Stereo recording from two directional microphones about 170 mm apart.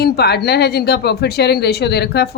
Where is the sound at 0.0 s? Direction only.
70° left (ahead or behind).